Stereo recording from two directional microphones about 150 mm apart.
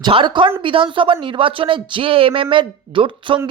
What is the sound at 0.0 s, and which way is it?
A woman's voice, 30° right (ahead or behind).